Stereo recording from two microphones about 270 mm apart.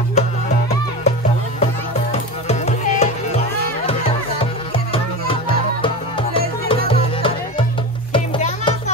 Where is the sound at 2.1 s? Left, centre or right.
Left.